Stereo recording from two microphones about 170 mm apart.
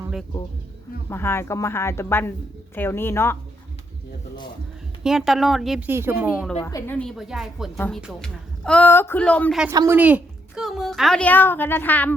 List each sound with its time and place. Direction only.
1.1 s a woman's voice: 15° left (ahead or behind)
5.0 s a woman's voice: centre (ahead or behind)
5.9 s speech: 15° right (ahead or behind)
6.6 s a woman's voice: 20° left (ahead or behind)
7.2 s a woman's voice: centre (ahead or behind)
9.7 s a woman's voice: 15° right (ahead or behind); by 12.1 s 10° left (ahead or behind)